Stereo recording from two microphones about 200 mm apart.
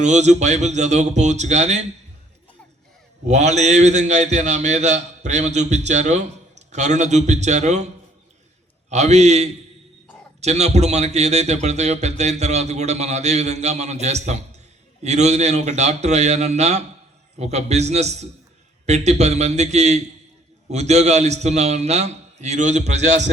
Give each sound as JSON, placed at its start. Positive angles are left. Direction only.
{"t": 0.0, "sound": "a man's voice", "side_deg": -35}
{"t": 3.2, "sound": "a man's voice", "side_deg": -35}
{"t": 8.9, "sound": "a man's voice", "side_deg": -35}